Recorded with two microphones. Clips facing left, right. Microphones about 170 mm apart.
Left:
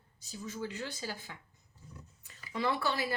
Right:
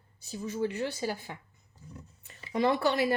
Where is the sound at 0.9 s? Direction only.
50° right (ahead or behind).